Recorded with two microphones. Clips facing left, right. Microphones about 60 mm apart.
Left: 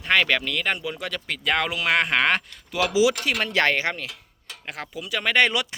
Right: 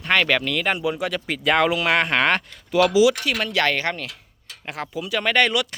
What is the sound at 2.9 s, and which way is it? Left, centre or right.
Speech, left.